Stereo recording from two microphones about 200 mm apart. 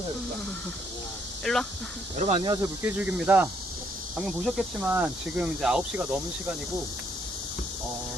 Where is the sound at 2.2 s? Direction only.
35° right (ahead or behind).